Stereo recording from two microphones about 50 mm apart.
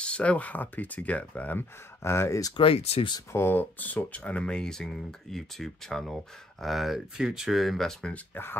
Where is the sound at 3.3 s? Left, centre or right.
Left.